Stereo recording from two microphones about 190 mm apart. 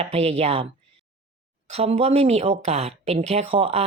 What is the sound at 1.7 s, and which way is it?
Speech, 35° right (ahead or behind).